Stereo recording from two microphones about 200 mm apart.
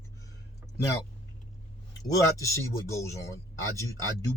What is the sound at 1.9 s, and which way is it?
Speech, 15° left (ahead or behind).